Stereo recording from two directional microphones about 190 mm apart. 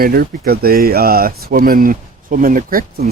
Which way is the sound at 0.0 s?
55° right (ahead or behind).